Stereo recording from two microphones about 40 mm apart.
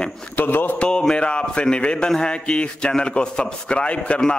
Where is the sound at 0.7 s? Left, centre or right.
Left.